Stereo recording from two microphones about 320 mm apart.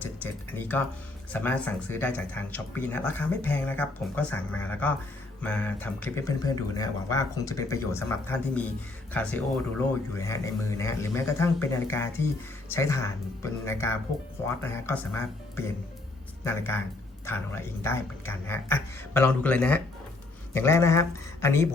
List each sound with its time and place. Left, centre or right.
0.0 s tick-tock: centre
1.3 s speech: centre